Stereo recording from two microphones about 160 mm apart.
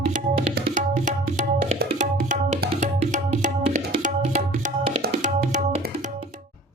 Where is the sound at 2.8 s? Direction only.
50° right (ahead or behind).